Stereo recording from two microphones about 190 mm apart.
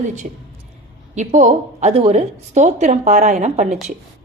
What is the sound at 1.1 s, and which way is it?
A woman's voice, 40° right (ahead or behind).